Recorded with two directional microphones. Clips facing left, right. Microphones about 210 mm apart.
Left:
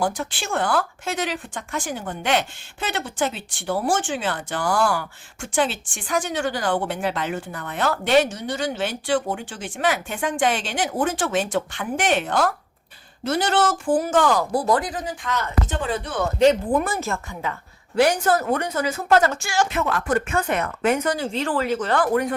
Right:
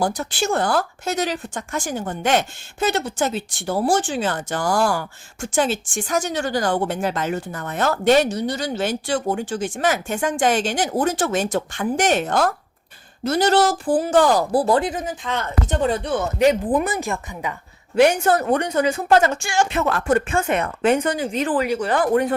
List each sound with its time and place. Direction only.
0.0 s speech: 40° right (ahead or behind); by 15.4 s 25° right (ahead or behind)
16.4 s a woman's voice: 10° right (ahead or behind)
18.0 s speech: 25° right (ahead or behind)
21.2 s a woman's voice: 15° right (ahead or behind)